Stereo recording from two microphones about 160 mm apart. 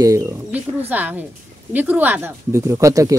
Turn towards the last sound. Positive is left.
turn(degrees=-20)  # may be behind; listen again after turning